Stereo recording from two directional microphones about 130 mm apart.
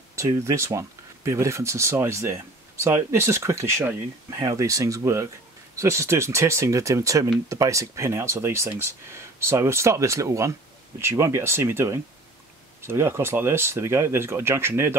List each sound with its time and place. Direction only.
0.1 s speech: 20° right (ahead or behind)